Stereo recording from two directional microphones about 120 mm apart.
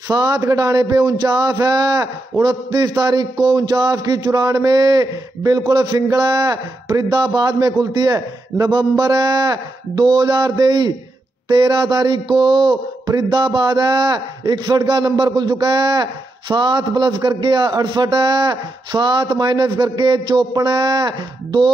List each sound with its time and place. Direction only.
0.1 s mantra: 30° right (ahead or behind)